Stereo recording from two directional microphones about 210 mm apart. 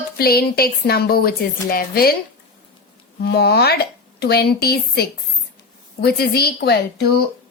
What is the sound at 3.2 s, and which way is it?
A woman's voice, 50° left (ahead or behind).